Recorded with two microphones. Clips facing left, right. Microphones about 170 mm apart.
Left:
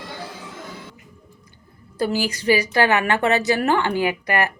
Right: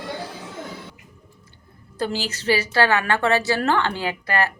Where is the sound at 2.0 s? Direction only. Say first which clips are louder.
Left 4 dB; 10° left (ahead or behind).